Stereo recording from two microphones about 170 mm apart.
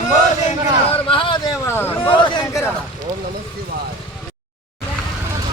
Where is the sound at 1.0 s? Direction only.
30° left (ahead or behind).